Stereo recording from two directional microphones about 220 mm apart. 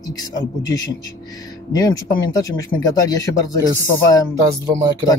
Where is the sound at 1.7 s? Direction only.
15° left (ahead or behind).